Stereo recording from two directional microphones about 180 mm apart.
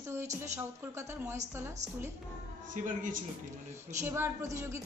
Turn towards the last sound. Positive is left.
turn(degrees=-15)  # may be behind; listen again after turning